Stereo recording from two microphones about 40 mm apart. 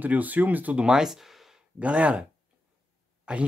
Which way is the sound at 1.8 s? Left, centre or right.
Right.